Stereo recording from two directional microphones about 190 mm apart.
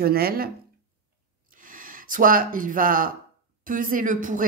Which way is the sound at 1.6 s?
45° right (ahead or behind).